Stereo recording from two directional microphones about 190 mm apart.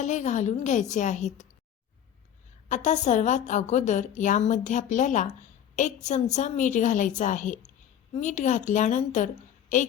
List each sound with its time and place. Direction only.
0.0 s a woman's voice: 40° left (ahead or behind)
2.6 s a woman's voice: 40° left (ahead or behind)